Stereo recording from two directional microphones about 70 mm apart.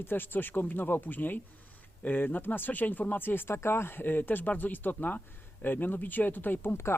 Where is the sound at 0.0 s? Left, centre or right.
Left.